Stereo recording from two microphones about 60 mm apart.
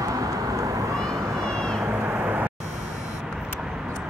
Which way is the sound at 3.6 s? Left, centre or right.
Centre.